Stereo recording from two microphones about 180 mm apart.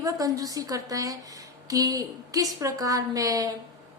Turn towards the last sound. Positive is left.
turn(degrees=-20)  # may be behind; listen again after turning